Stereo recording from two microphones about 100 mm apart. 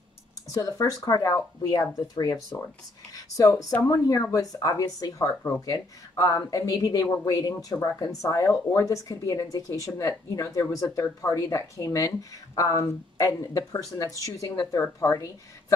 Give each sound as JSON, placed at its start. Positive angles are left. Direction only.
{"t": 0.5, "sound": "speech", "side_deg": 35}
{"t": 3.3, "sound": "speech", "side_deg": 35}